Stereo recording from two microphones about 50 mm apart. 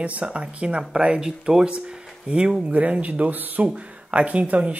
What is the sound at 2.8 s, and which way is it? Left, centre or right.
Speech, right.